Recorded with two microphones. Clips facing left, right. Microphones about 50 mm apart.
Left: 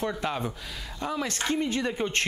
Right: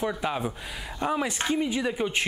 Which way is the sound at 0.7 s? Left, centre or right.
Centre.